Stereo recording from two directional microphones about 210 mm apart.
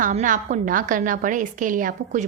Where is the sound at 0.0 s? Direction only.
35° right (ahead or behind).